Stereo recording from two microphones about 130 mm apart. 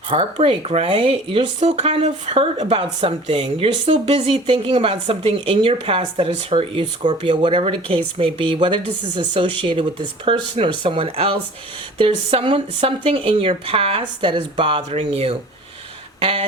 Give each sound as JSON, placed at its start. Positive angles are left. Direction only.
{"t": 0.1, "sound": "speech", "side_deg": -45}